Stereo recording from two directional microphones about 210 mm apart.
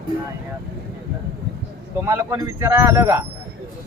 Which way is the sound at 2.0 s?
10° right (ahead or behind).